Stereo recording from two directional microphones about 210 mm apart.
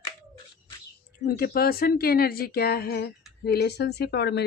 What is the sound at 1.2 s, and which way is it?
Speech, 45° left (ahead or behind).